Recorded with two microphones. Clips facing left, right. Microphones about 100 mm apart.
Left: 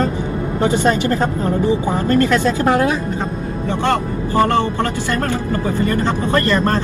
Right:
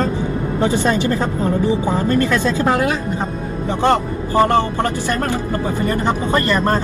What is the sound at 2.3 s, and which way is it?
Speech, 15° left (ahead or behind).